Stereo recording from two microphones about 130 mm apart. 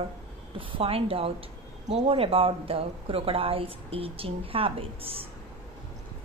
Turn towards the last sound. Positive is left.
turn(degrees=-45)  # may be behind; listen again after turning